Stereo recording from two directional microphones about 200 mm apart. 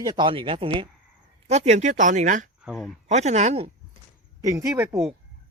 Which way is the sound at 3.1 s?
35° right (ahead or behind).